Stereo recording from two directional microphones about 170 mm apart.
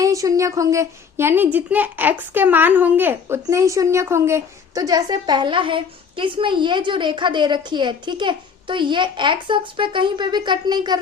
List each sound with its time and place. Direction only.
0.0 s speech: 20° right (ahead or behind)